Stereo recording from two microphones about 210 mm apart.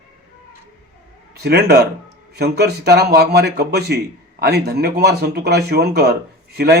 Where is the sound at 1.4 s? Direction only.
50° right (ahead or behind).